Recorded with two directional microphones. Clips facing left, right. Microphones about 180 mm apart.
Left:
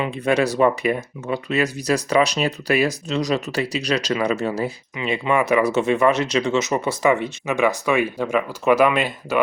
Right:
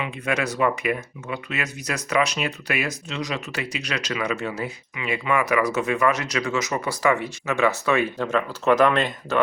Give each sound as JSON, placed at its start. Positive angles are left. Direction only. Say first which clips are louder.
{"t": 0.0, "sound": "speech", "louder": "left 6 dB", "side_deg": 30}